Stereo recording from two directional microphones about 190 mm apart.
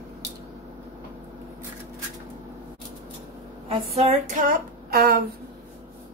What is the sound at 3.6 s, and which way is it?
Speech, 35° right (ahead or behind).